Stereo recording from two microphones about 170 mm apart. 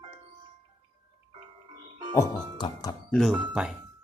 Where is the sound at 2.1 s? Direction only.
25° left (ahead or behind).